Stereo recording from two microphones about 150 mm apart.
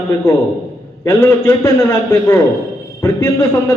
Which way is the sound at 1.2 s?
25° left (ahead or behind).